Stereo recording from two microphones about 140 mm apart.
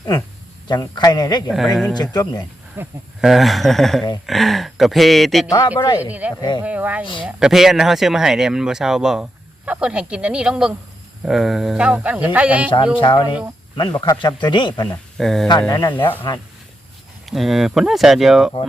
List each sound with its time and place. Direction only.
0.7 s speech: 30° left (ahead or behind)
1.5 s speech: centre (ahead or behind)
2.0 s speech: 30° left (ahead or behind)
2.8 s speech: 15° right (ahead or behind)
3.2 s speech: centre (ahead or behind)
5.5 s speech: 30° left (ahead or behind)
6.0 s speech: 10° right (ahead or behind)
7.0 s speech: 35° left (ahead or behind)
7.3 s speech: 5° right (ahead or behind)
13.0 s speech: 35° left (ahead or behind)
15.2 s speech: centre (ahead or behind)
15.7 s speech: 30° left (ahead or behind)
17.2 s speech: centre (ahead or behind)